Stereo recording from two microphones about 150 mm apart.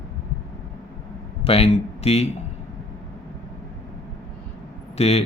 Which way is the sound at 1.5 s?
40° left (ahead or behind).